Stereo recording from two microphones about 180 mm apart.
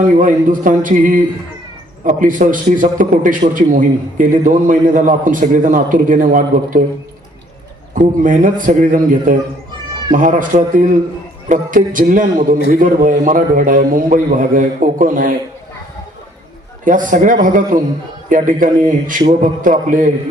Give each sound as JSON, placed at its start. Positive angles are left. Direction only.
{"t": 0.0, "sound": "a man's voice", "side_deg": -45}
{"t": 7.9, "sound": "a man's voice", "side_deg": -45}
{"t": 16.8, "sound": "a man's voice", "side_deg": -45}